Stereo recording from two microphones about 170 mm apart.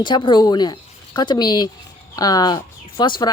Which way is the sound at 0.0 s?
25° left (ahead or behind).